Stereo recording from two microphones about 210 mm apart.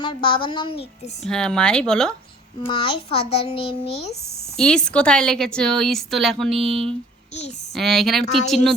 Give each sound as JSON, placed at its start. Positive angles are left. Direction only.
{"t": 0.0, "sound": "a woman's voice", "side_deg": 25}
{"t": 1.3, "sound": "speech", "side_deg": 5}
{"t": 2.6, "sound": "a woman's voice", "side_deg": 25}
{"t": 3.2, "sound": "a child's voice", "side_deg": 50}
{"t": 3.4, "sound": "a woman's voice", "side_deg": 25}
{"t": 4.1, "sound": "speech", "side_deg": 50}
{"t": 4.5, "sound": "speech", "side_deg": 5}